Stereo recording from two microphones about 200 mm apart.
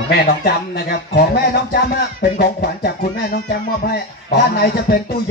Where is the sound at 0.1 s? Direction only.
50° left (ahead or behind).